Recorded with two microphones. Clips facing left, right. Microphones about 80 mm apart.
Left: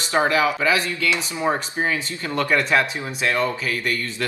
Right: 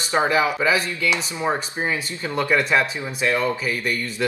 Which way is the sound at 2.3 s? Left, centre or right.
Centre.